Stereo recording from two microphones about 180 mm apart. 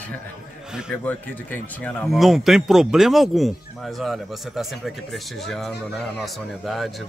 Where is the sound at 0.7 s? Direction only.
5° right (ahead or behind).